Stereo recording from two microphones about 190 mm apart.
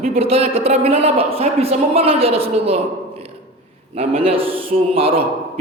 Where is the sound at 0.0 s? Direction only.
30° right (ahead or behind).